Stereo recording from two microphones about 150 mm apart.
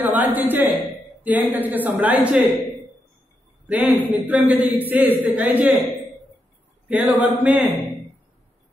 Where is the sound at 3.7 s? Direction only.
10° right (ahead or behind).